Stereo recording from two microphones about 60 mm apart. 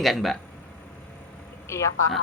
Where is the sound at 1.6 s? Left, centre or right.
Left.